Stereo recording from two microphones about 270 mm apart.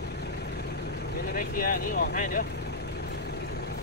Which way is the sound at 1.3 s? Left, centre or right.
Left.